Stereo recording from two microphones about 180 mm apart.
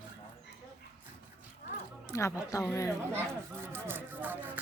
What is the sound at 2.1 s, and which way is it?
Speech, 15° left (ahead or behind).